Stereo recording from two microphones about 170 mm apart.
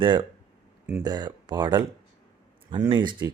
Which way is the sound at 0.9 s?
20° right (ahead or behind).